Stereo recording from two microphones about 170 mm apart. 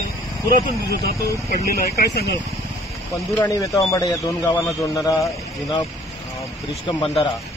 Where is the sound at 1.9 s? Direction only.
70° left (ahead or behind).